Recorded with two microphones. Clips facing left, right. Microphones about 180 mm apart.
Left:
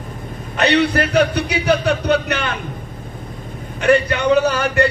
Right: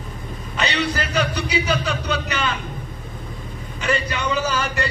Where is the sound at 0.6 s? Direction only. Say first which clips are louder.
Left 8 dB; 60° left (ahead or behind).